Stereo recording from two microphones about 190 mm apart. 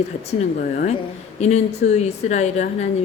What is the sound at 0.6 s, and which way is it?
Speech, 45° left (ahead or behind).